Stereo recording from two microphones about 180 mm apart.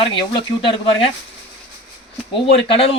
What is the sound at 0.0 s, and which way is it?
Speech, 30° left (ahead or behind).